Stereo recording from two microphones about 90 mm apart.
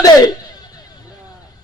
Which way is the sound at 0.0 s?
45° left (ahead or behind).